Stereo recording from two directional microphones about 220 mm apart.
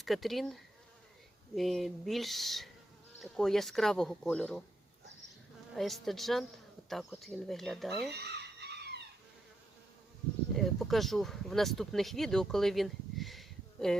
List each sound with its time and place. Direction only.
0.0 s speech: centre (ahead or behind)
5.7 s speech: centre (ahead or behind)
8.1 s a sound: 50° right (ahead or behind)
10.5 s speech: centre (ahead or behind)